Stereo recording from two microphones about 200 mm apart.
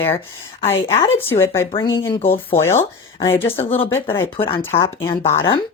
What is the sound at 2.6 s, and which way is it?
Speech, 15° left (ahead or behind).